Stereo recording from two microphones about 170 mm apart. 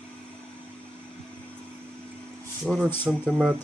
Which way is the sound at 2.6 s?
Centre (ahead or behind).